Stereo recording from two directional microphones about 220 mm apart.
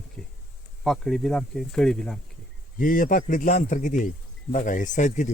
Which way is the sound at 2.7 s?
40° left (ahead or behind).